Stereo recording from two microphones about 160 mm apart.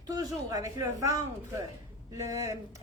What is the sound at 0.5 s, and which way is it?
Speech, 20° right (ahead or behind).